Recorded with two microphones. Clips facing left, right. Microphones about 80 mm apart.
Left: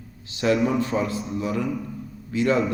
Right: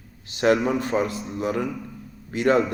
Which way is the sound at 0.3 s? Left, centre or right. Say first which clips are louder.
Right 1 dB; right.